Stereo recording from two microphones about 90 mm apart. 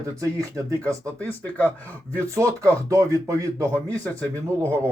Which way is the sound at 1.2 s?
20° left (ahead or behind).